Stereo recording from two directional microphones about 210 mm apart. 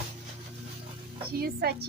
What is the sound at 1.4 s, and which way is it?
Speech, 50° right (ahead or behind).